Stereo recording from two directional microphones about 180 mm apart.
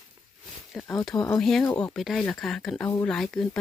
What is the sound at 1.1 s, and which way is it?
Speech, 20° left (ahead or behind).